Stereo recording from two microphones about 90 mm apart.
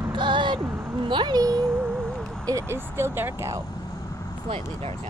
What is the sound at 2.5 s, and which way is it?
Speech, 30° right (ahead or behind).